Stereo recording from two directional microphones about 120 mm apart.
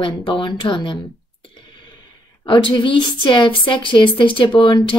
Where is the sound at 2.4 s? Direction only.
45° left (ahead or behind).